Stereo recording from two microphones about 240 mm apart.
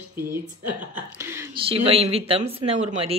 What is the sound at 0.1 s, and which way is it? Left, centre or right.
A woman's voice, centre.